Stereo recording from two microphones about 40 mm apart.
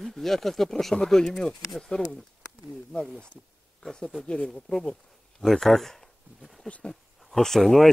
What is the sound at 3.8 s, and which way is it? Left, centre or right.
Speech, centre.